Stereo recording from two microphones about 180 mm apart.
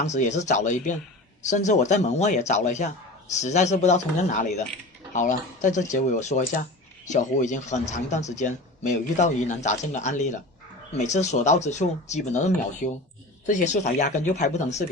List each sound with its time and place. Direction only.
0.0 s speech: 40° left (ahead or behind)